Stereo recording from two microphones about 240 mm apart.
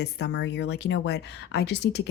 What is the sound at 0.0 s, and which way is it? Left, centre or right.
Speech, left.